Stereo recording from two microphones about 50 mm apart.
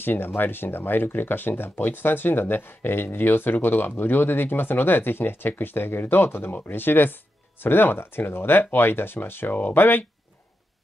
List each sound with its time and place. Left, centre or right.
0.0 s speech: left